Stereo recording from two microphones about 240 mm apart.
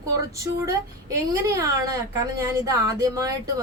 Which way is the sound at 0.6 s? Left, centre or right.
Centre.